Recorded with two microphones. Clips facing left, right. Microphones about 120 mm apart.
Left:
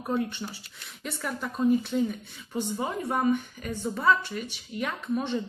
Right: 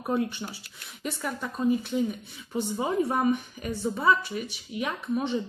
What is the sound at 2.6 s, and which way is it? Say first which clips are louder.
Speech: right 4 dB; 15° right (ahead or behind).